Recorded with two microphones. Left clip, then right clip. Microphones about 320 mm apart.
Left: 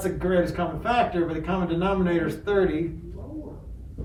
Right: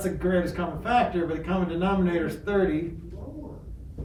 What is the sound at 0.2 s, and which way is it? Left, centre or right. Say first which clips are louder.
A man's voice: left 3 dB; centre.